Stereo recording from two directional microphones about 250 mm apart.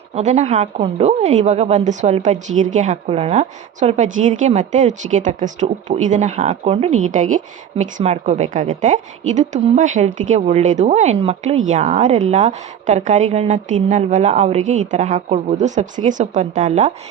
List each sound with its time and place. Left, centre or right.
0.2 s a woman's voice: right